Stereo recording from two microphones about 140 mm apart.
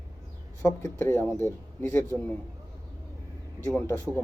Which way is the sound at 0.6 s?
15° left (ahead or behind).